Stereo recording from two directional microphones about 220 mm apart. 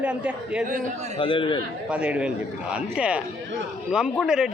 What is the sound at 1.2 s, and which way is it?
Speech, 25° left (ahead or behind).